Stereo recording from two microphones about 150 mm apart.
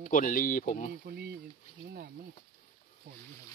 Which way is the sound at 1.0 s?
90° right.